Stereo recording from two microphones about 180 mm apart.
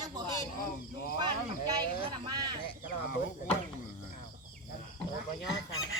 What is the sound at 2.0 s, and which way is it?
Speech, 25° right (ahead or behind).